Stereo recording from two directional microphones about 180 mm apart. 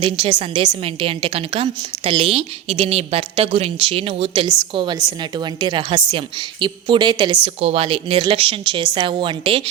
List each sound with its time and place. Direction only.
0.0 s a woman's voice: 30° right (ahead or behind)